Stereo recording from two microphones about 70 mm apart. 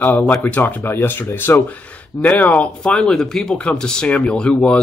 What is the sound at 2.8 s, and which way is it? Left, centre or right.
Speech, centre.